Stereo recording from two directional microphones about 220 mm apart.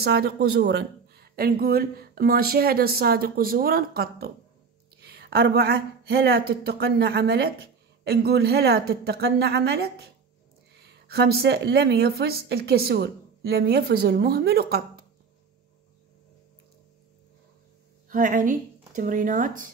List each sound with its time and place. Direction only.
0.0 s speech: 45° right (ahead or behind)
18.1 s speech: 35° right (ahead or behind)